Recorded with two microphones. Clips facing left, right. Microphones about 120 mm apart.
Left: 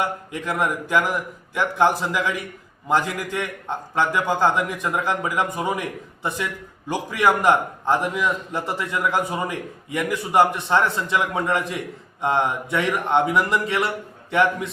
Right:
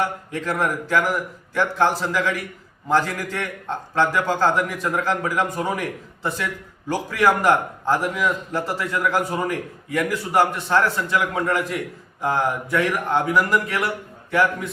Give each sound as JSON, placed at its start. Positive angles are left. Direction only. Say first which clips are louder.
{"t": 0.0, "sound": "a man's voice", "louder": "right 1 dB", "side_deg": 15}